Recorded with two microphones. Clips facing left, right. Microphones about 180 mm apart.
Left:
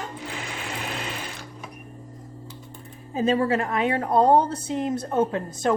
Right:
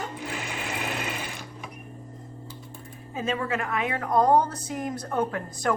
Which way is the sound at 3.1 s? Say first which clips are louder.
Left 7 dB; 35° left (ahead or behind).